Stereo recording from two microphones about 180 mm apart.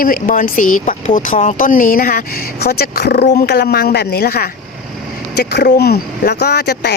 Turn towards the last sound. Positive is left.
turn(degrees=65)  # may be behind; listen again after turning